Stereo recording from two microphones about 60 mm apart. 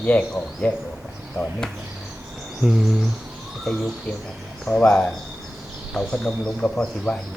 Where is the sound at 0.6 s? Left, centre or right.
Left.